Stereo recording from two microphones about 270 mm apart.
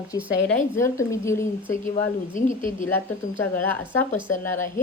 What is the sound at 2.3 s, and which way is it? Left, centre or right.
Speech, left.